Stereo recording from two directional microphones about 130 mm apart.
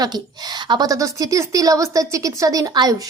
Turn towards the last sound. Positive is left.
turn(degrees=-30)  # may be behind; listen again after turning